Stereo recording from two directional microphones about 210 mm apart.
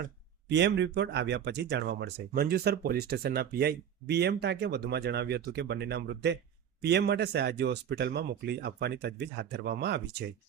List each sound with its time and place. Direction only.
0.4 s speech: 55° right (ahead or behind)